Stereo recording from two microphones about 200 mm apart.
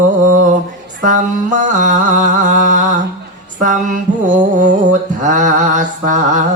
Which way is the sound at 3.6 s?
40° right (ahead or behind).